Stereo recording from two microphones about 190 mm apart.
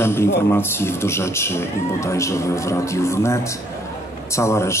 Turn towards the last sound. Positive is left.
turn(degrees=15)  # may be behind; listen again after turning